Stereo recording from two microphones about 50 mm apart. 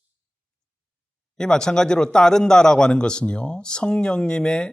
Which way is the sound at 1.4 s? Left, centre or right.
Centre.